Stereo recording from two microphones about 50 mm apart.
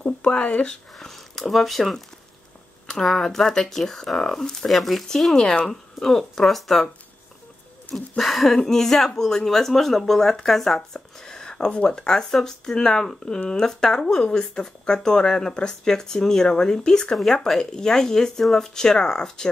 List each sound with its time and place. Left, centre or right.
0.0 s speech: left
0.9 s speech: centre
7.9 s speech: centre